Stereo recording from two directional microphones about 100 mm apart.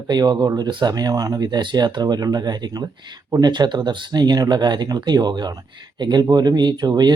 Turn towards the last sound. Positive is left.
turn(degrees=-45)  # may be behind; listen again after turning